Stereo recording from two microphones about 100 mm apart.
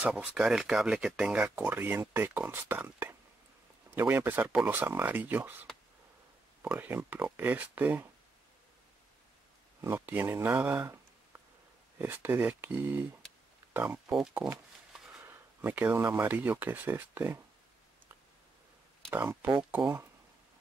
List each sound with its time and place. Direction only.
0.0 s speech: 15° right (ahead or behind)
6.7 s speech: 20° right (ahead or behind)
9.8 s speech: 20° right (ahead or behind)
14.1 s speech: 5° right (ahead or behind)
15.2 s speech: 20° right (ahead or behind)
19.0 s speech: 20° right (ahead or behind)